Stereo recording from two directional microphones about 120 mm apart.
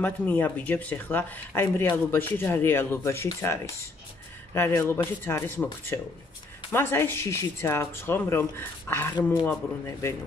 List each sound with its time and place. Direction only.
0.0 s speech: 15° left (ahead or behind)